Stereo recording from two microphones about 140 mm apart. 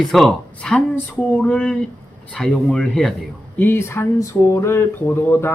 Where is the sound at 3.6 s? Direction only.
15° left (ahead or behind).